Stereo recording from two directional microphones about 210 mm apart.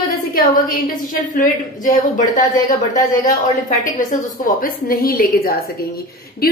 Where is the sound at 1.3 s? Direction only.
40° left (ahead or behind).